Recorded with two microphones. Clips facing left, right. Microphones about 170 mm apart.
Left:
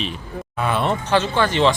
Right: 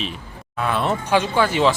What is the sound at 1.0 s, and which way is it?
Speech, 10° right (ahead or behind).